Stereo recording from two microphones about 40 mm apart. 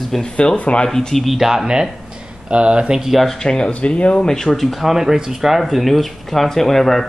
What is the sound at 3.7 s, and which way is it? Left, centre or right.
Speech, left.